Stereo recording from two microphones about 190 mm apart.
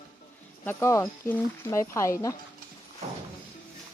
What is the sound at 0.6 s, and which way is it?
Speech, 10° left (ahead or behind).